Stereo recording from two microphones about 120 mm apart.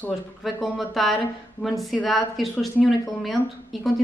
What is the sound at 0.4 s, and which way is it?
A woman's voice, centre (ahead or behind).